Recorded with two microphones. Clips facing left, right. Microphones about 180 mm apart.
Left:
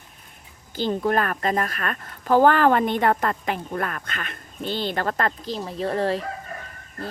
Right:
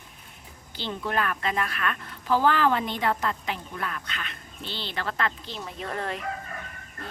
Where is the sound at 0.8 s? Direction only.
45° left (ahead or behind).